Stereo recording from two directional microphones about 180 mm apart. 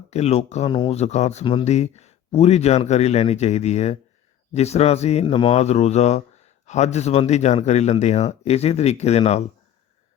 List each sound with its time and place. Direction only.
0.1 s speech: 35° left (ahead or behind)